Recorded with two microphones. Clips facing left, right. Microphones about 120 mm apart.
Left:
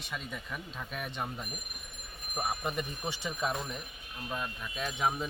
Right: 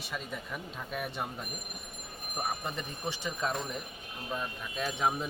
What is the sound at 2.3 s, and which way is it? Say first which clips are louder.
A man's voice: left 2 dB; 10° left (ahead or behind).